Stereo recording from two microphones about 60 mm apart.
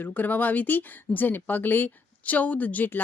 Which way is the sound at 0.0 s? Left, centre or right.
Left.